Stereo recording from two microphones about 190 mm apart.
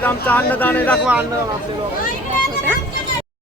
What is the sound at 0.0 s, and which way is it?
Speech, 10° left (ahead or behind).